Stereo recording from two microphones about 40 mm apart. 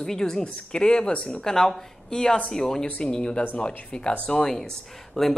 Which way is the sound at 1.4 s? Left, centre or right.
Centre.